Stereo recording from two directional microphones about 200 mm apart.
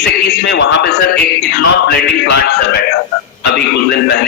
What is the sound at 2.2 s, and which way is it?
Mantra, 55° left (ahead or behind).